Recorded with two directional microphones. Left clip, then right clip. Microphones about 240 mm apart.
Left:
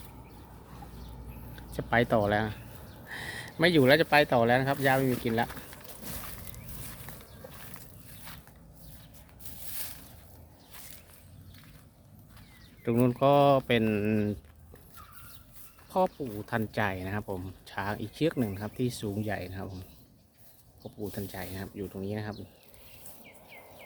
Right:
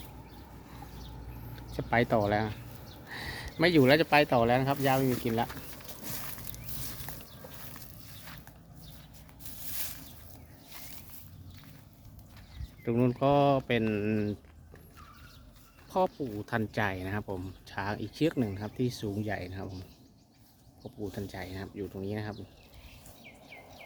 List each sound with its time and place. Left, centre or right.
1.5 s speech: centre
9.4 s a sound: centre
12.8 s speech: centre
15.9 s speech: centre
21.1 s speech: centre